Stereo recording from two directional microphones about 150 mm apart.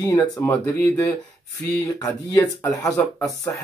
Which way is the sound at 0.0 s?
20° left (ahead or behind).